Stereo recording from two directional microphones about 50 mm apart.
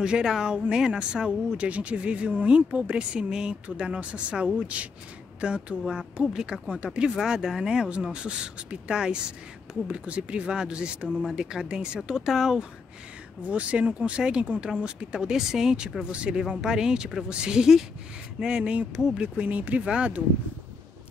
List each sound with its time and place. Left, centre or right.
0.0 s speech: centre
13.5 s speech: right
19.4 s speech: right